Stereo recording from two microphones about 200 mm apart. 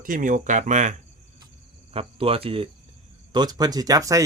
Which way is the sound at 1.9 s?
30° right (ahead or behind).